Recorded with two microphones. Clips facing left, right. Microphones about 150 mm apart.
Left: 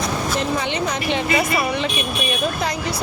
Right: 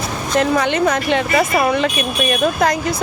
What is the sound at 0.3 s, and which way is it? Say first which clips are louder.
Speech: right 11 dB; 60° right (ahead or behind).